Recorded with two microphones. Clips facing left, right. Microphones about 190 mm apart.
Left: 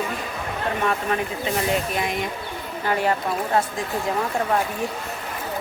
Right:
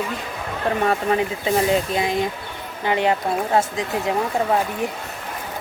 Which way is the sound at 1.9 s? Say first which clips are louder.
Right 4 dB; 30° right (ahead or behind).